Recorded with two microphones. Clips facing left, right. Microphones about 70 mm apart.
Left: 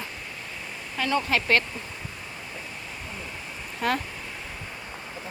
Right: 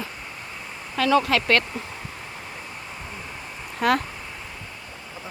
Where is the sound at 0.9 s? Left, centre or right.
Right.